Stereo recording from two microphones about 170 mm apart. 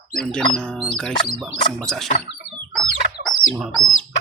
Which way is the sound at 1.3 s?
25° left (ahead or behind).